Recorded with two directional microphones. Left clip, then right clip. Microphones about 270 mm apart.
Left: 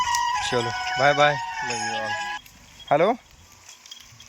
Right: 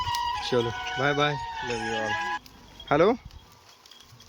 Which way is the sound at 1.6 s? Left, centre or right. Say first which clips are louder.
Even; centre.